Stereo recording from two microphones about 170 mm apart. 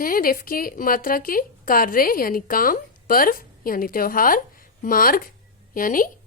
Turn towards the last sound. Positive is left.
turn(degrees=55)  # may be behind; listen again after turning